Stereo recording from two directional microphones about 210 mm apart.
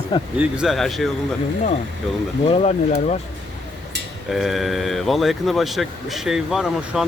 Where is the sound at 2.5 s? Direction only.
30° left (ahead or behind).